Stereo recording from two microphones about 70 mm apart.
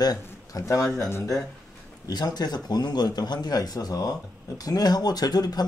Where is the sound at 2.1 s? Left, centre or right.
Left.